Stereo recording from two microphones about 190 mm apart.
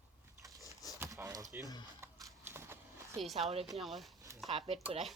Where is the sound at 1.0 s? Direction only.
15° right (ahead or behind).